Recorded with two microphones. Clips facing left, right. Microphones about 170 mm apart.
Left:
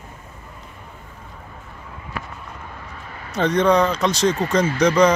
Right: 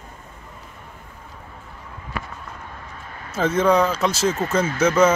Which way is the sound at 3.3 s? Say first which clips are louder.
Left 1 dB; 5° right (ahead or behind).